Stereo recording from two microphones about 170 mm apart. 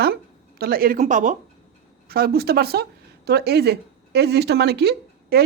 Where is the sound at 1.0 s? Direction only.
45° right (ahead or behind).